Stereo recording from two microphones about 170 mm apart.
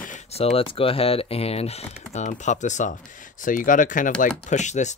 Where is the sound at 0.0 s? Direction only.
40° left (ahead or behind).